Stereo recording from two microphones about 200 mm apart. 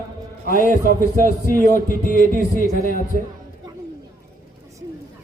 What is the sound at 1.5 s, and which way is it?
A man's voice, 45° left (ahead or behind).